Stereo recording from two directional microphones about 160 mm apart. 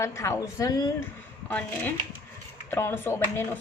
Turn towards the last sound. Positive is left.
turn(degrees=15)  # may be behind; listen again after turning